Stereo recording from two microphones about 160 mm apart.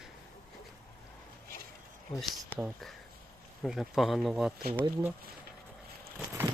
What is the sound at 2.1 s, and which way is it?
Speech, 35° left (ahead or behind).